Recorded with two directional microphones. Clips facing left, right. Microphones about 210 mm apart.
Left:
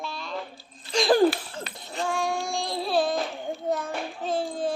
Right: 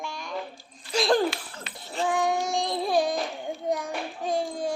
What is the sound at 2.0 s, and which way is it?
Child singing, 20° right (ahead or behind).